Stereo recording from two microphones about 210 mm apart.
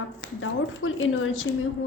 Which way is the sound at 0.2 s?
70° left (ahead or behind).